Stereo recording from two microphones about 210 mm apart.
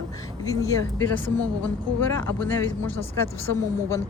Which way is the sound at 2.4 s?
10° left (ahead or behind).